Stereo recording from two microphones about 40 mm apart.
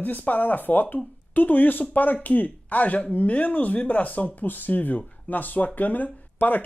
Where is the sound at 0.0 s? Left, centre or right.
Left.